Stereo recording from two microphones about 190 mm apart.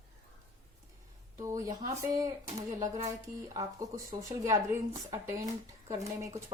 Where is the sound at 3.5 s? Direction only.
20° right (ahead or behind).